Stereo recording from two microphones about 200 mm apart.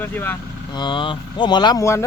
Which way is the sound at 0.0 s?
10° left (ahead or behind).